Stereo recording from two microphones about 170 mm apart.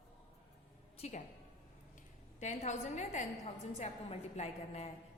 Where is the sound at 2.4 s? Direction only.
45° left (ahead or behind).